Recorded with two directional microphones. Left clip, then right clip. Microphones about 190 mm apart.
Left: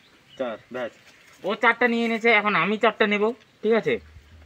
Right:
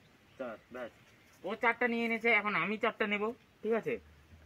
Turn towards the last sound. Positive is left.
turn(degrees=-5)  # may be behind; listen again after turning